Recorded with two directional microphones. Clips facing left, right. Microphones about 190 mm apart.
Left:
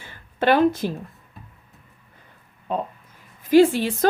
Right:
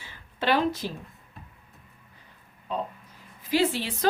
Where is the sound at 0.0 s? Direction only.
50° left (ahead or behind).